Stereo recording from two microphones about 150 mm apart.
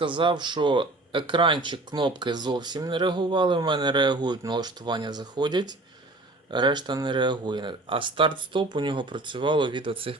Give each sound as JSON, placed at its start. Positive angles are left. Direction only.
{"t": 0.0, "sound": "speech", "side_deg": -35}